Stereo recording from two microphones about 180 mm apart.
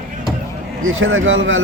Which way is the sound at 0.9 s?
90° right.